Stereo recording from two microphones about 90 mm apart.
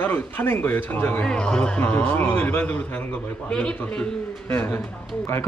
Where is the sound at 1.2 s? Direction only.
10° left (ahead or behind).